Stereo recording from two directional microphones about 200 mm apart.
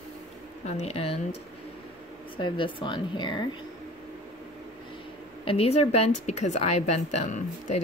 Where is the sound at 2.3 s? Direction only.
25° left (ahead or behind).